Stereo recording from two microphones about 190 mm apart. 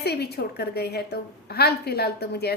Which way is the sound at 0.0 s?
60° left (ahead or behind).